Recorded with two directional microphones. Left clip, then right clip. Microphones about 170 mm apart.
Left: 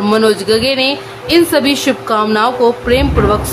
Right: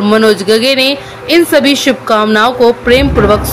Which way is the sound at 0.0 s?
15° right (ahead or behind).